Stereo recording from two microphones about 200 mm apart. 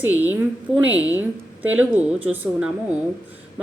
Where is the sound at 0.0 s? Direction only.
10° right (ahead or behind).